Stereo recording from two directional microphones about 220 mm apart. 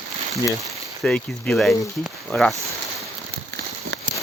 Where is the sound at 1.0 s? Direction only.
5° left (ahead or behind).